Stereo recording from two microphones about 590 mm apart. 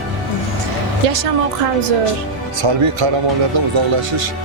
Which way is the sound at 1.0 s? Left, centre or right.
Right.